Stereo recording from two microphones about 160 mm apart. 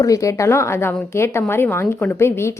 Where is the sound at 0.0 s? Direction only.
20° left (ahead or behind).